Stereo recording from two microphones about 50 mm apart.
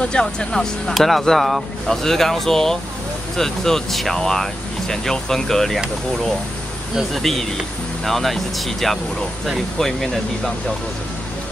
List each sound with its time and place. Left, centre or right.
0.0 s speech: centre
0.9 s speech: centre
7.2 s speech: centre